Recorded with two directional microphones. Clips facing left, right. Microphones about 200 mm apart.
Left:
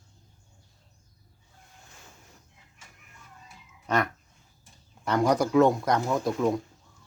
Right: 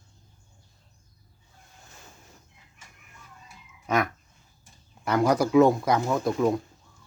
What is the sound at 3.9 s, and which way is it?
Speech, 10° right (ahead or behind).